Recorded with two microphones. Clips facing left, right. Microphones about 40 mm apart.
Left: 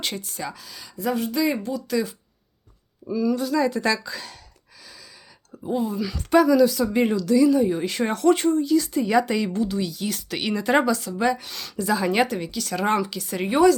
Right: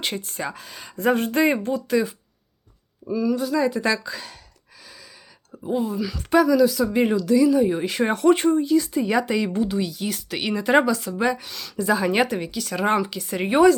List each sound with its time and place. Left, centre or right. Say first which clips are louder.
0.0 s speech: right 2 dB; right
0.3 s speech: right 2 dB; right
0.9 s speech: right 4 dB; right
1.9 s speech: right 3 dB; right
3.1 s a woman's voice: even; centre
5.5 s a woman's voice: right 1 dB; centre
9.5 s a woman's voice: right 1 dB; centre
11.8 s a woman's voice: right 1 dB; centre